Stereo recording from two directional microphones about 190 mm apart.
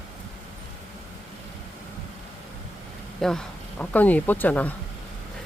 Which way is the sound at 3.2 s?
5° left (ahead or behind).